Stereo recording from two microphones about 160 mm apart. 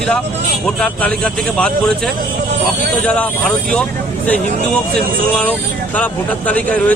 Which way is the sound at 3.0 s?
10° left (ahead or behind).